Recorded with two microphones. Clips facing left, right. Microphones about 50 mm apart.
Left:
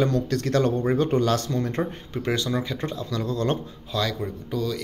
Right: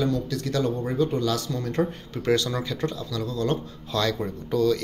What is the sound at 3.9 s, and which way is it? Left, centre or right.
Speech, centre.